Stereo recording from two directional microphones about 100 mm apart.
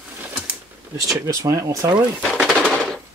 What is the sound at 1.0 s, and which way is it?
Speech, 35° right (ahead or behind).